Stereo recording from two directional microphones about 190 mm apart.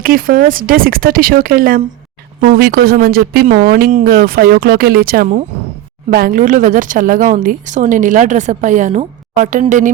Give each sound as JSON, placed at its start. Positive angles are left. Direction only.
{"t": 0.0, "sound": "speech", "side_deg": -50}